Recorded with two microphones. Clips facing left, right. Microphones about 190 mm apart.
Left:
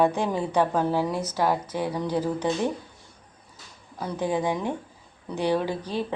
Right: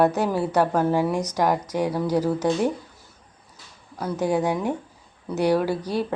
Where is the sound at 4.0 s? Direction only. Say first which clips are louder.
Right 3 dB; 5° right (ahead or behind).